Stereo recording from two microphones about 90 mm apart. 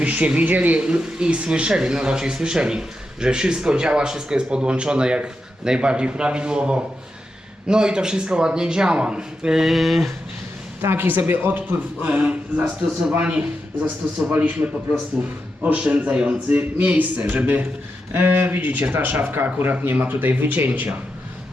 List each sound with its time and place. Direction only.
0.0 s speech: 15° right (ahead or behind)
10.8 s speech: 25° right (ahead or behind)